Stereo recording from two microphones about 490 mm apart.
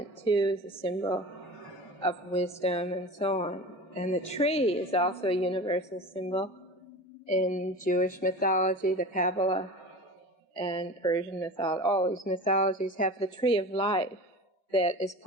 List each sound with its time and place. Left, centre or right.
0.3 s speech: centre
7.3 s speech: centre